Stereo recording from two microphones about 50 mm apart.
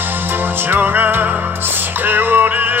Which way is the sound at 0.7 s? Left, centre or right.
Right.